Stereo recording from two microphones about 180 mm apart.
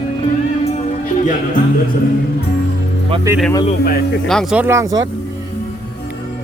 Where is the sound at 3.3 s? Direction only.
15° right (ahead or behind).